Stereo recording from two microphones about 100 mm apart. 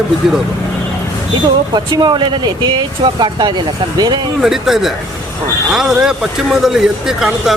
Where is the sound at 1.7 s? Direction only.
45° right (ahead or behind).